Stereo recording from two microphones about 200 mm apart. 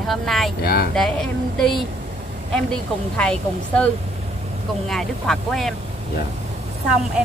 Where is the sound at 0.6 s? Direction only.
50° left (ahead or behind).